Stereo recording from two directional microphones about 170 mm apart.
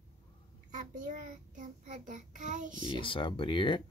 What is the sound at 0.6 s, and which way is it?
A child's voice, 50° right (ahead or behind).